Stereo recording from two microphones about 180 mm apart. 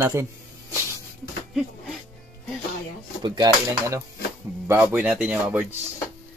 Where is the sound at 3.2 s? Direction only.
25° right (ahead or behind); by 5.6 s 5° right (ahead or behind).